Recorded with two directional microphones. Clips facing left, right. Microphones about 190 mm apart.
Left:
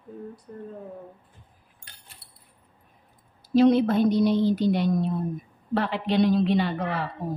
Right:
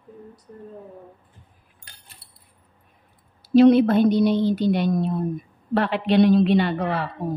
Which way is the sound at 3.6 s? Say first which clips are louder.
Right 5 dB; 65° right (ahead or behind).